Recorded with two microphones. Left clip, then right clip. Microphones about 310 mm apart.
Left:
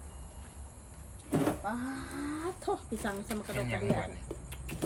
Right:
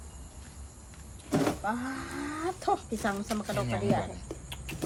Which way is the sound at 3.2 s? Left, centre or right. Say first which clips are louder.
Right 4 dB; centre.